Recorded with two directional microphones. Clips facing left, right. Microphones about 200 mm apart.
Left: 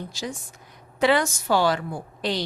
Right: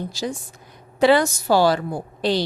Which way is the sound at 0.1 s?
35° right (ahead or behind).